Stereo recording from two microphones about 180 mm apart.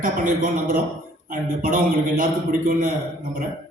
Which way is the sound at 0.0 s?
50° right (ahead or behind).